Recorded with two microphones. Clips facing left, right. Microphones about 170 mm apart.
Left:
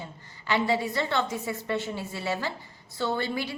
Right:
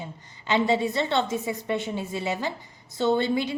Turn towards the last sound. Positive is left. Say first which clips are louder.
# right 6 dB
turn(degrees=-20)  # may be behind; listen again after turning